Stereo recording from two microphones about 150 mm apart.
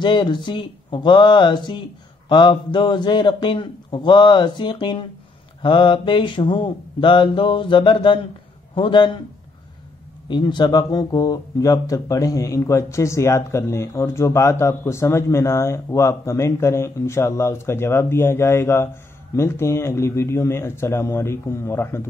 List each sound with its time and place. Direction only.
0.0 s speech: 30° left (ahead or behind)
10.2 s a man's voice: 30° left (ahead or behind); by 22.0 s 15° left (ahead or behind)